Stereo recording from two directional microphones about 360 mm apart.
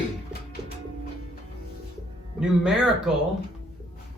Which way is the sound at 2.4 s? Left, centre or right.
Centre.